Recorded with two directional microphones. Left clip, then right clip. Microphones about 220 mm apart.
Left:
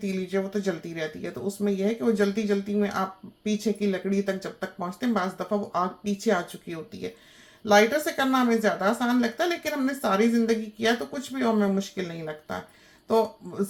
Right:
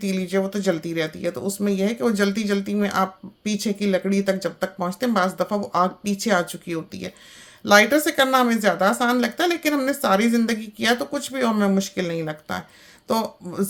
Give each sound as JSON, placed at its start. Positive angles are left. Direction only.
{"t": 0.0, "sound": "speech", "side_deg": -45}